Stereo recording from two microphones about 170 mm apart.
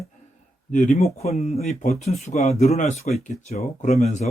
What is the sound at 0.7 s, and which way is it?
Speech, 45° left (ahead or behind).